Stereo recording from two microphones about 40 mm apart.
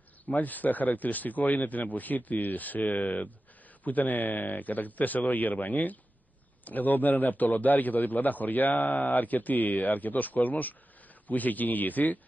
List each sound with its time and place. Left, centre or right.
0.2 s a man's voice: left